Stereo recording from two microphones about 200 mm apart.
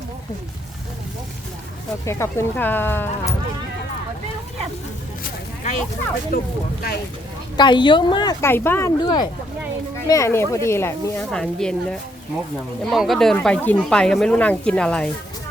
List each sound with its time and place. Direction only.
2.0 s speech: 15° left (ahead or behind)
6.3 s speech: 50° left (ahead or behind)
7.5 s speech: 25° left (ahead or behind); by 15.1 s 5° left (ahead or behind)